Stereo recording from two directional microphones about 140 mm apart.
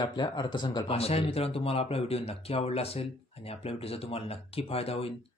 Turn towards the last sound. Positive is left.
turn(degrees=45)  # may be behind; listen again after turning